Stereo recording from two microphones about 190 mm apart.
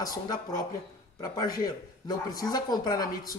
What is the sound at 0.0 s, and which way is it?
Speech, 20° left (ahead or behind).